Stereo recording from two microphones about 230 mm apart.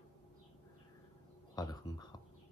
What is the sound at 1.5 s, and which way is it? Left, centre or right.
Speech, centre.